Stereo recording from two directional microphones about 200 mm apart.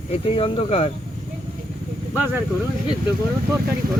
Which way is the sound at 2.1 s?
10° right (ahead or behind).